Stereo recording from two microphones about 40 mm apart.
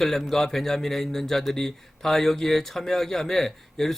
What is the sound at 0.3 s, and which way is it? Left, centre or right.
Speech, centre.